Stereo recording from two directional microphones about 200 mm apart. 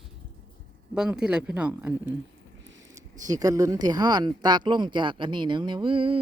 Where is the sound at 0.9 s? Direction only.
5° right (ahead or behind).